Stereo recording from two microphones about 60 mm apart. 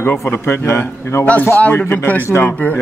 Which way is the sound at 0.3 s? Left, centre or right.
Left.